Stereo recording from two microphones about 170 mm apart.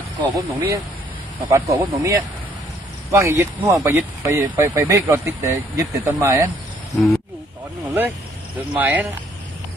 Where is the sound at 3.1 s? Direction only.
15° right (ahead or behind).